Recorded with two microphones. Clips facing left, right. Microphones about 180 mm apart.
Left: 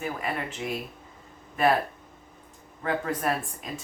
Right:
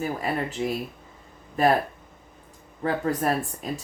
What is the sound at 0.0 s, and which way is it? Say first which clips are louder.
A woman's voice: right 4 dB; 35° right (ahead or behind).